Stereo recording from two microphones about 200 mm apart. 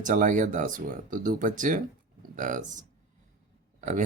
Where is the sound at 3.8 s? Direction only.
40° right (ahead or behind).